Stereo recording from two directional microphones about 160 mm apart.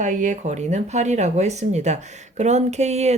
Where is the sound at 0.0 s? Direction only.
50° right (ahead or behind).